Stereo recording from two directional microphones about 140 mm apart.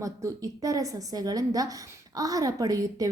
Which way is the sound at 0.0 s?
20° right (ahead or behind).